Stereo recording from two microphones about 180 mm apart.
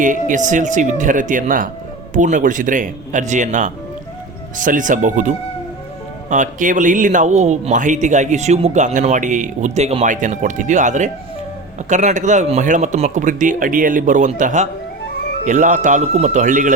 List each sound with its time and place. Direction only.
0.0 s speech: 45° right (ahead or behind)
6.3 s speech: 45° right (ahead or behind)